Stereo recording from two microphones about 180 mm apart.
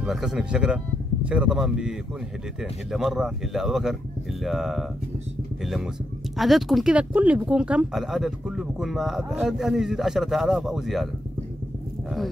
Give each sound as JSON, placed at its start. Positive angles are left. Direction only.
{"t": 0.0, "sound": "speech", "side_deg": 0}
{"t": 6.3, "sound": "speech", "side_deg": 0}